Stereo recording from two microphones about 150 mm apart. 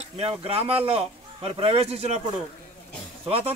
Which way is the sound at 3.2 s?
40° right (ahead or behind).